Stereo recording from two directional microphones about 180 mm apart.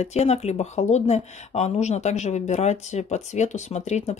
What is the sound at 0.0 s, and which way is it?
Speech, 35° left (ahead or behind).